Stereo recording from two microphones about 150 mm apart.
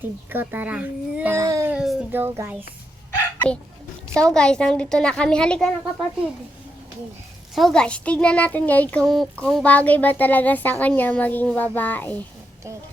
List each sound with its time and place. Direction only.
0.3 s speech: 15° right (ahead or behind)
1.4 s a sound: 20° right (ahead or behind)
1.7 s a sound: 5° right (ahead or behind)
2.1 s speech: 15° right (ahead or behind)
4.1 s a woman's voice: 5° left (ahead or behind)
7.5 s speech: 5° left (ahead or behind)